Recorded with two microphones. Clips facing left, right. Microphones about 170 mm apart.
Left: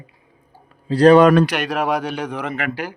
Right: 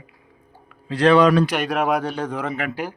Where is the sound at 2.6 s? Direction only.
90° left.